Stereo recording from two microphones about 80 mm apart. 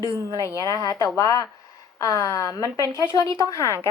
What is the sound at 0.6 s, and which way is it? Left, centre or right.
A woman's voice, left.